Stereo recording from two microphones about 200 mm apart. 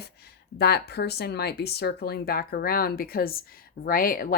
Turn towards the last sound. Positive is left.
turn(degrees=45)  # may be behind; listen again after turning